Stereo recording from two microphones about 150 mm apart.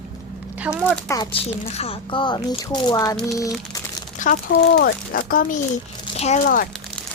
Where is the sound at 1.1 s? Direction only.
35° left (ahead or behind).